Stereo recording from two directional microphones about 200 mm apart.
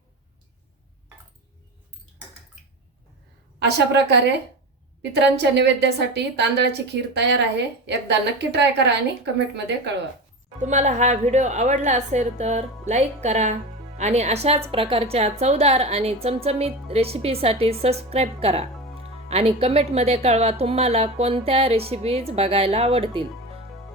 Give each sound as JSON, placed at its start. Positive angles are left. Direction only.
{"t": 3.6, "sound": "a woman's voice", "side_deg": -60}
{"t": 10.6, "sound": "a woman's voice", "side_deg": -35}